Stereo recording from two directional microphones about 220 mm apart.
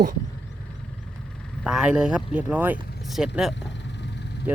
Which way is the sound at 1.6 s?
5° right (ahead or behind).